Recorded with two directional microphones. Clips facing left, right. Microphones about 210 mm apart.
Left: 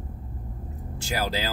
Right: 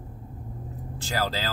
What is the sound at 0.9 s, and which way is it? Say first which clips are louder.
Speech: left 1 dB; 15° left (ahead or behind).